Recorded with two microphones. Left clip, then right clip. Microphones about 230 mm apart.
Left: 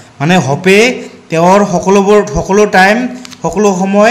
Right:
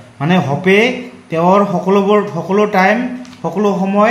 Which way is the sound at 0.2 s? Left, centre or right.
Left.